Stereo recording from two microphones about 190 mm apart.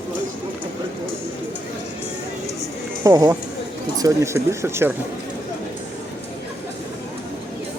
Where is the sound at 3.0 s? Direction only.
20° right (ahead or behind).